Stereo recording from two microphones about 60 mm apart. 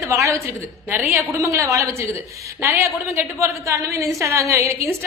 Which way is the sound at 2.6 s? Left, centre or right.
Right.